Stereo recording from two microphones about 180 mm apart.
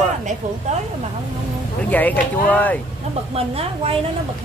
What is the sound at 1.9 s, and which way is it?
Speech, 10° left (ahead or behind).